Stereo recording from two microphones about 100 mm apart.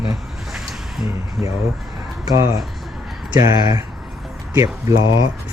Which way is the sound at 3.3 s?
45° right (ahead or behind).